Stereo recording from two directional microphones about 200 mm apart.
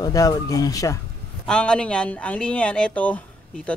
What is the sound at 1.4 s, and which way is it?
Speech, 5° left (ahead or behind).